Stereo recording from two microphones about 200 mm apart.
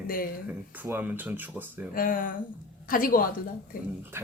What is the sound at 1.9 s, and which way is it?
Speech, 45° left (ahead or behind).